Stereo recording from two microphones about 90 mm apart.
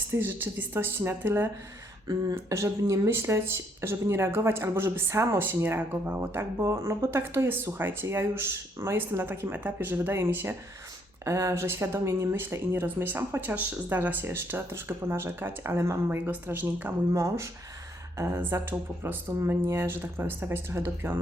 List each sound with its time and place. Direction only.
0.1 s speech: 25° right (ahead or behind)
17.1 s speech: 35° right (ahead or behind)